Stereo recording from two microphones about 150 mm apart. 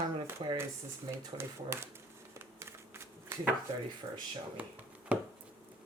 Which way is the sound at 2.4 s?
15° right (ahead or behind).